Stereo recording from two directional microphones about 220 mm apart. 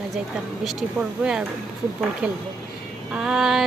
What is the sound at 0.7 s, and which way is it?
Speech, centre (ahead or behind).